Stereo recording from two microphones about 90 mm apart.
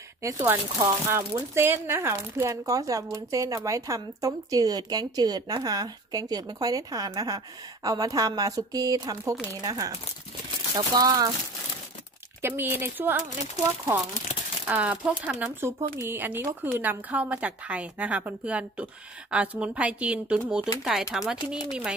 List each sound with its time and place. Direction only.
0.2 s speech: 35° right (ahead or behind)
12.4 s speech: 25° right (ahead or behind)
14.7 s speech: 15° right (ahead or behind)